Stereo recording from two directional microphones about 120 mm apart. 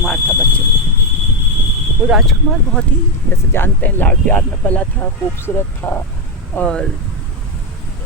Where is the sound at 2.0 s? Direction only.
5° right (ahead or behind).